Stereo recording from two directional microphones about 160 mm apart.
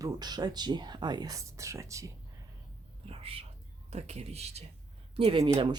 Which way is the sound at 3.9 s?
40° right (ahead or behind).